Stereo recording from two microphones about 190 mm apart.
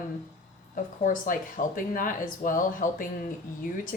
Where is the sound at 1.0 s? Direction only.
45° left (ahead or behind).